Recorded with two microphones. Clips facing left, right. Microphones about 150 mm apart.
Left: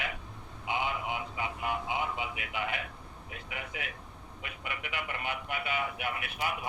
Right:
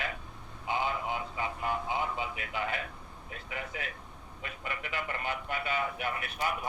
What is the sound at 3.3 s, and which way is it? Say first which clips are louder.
Speech: right 2 dB; 10° left (ahead or behind).